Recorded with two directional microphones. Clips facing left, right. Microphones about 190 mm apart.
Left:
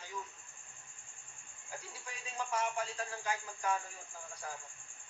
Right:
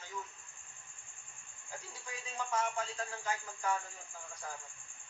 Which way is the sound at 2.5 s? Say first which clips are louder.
Right 1 dB; 10° left (ahead or behind).